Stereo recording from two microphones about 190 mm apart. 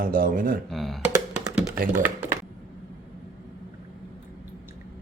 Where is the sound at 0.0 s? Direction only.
50° right (ahead or behind).